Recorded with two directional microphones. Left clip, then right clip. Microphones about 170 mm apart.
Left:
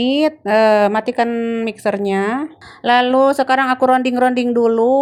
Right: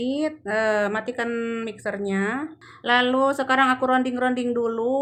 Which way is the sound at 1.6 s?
40° left (ahead or behind).